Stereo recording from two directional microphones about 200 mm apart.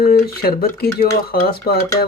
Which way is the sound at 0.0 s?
50° left (ahead or behind).